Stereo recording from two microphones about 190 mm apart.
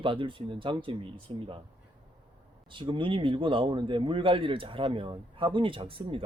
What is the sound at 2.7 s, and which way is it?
A man's voice, 25° right (ahead or behind).